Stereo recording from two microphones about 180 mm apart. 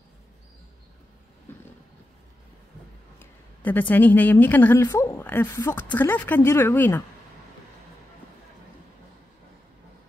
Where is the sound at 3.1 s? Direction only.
10° left (ahead or behind).